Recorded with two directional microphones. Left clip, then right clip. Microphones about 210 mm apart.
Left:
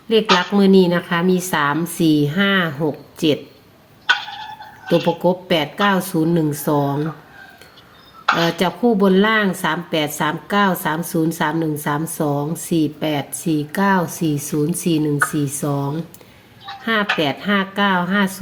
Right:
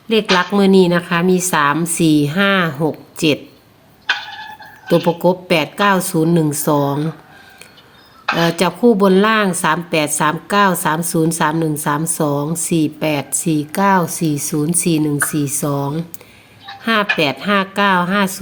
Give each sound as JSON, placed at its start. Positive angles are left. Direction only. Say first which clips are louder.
{"t": 0.3, "sound": "a woman's voice", "louder": "right 2 dB", "side_deg": -25}
{"t": 5.0, "sound": "a woman's voice", "louder": "right 3 dB", "side_deg": -30}
{"t": 8.4, "sound": "a woman's voice", "louder": "right 4 dB", "side_deg": -30}